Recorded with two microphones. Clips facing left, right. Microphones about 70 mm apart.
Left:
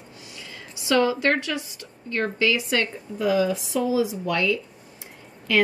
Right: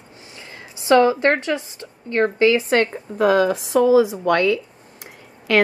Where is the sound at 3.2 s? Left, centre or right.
Right.